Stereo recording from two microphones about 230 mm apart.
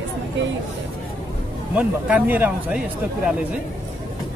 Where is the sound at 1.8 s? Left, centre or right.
Centre.